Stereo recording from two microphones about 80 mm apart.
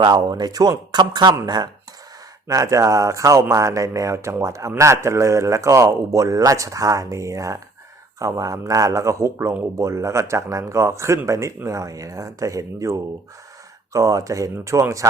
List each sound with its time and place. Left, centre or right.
0.0 s speech: right
2.5 s speech: right